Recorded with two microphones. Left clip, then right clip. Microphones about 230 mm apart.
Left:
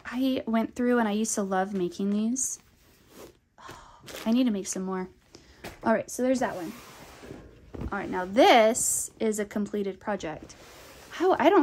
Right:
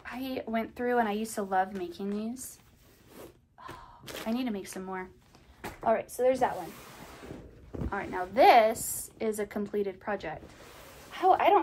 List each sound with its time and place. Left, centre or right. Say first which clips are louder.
0.0 s speech: left 7 dB; left
4.3 s speech: left 8 dB; left
5.9 s speech: even; left
7.9 s a woman's voice: left 4 dB; left
11.1 s speech: left 1 dB; left